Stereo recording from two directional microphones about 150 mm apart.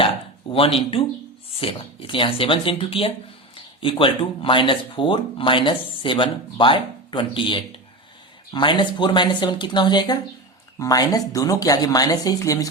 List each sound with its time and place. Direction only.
0.5 s speech: 40° left (ahead or behind); by 12.6 s 25° left (ahead or behind)